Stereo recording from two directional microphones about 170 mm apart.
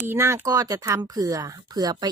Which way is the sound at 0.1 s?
15° right (ahead or behind).